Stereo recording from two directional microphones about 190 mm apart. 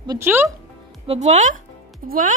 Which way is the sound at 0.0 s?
15° right (ahead or behind).